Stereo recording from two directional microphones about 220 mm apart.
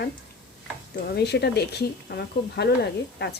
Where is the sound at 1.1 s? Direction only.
50° left (ahead or behind).